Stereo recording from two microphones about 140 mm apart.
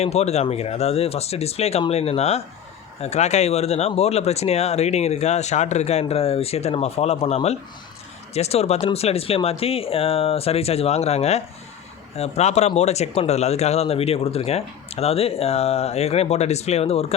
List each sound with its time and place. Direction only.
0.0 s speech: 50° left (ahead or behind)